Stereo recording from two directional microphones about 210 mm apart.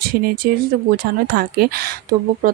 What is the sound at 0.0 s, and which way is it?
Speech, 45° right (ahead or behind).